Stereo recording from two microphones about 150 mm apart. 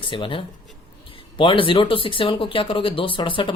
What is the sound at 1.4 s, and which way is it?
Speech, 35° left (ahead or behind).